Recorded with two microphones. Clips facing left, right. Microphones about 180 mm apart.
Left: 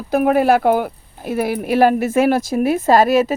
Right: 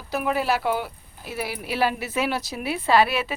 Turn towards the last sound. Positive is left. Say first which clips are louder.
# left 7 dB
turn(degrees=40)  # may be behind; listen again after turning